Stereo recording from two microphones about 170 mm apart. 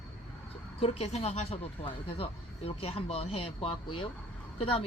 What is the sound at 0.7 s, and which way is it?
Speech, 35° left (ahead or behind).